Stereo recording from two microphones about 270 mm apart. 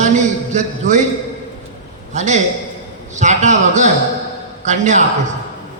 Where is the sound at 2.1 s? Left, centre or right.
Right.